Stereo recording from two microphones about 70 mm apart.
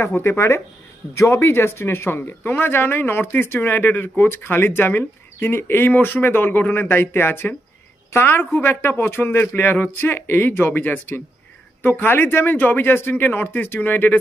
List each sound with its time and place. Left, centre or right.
0.0 s speech: left